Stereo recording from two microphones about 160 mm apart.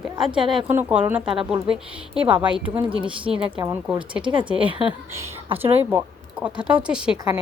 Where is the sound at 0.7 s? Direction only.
10° right (ahead or behind).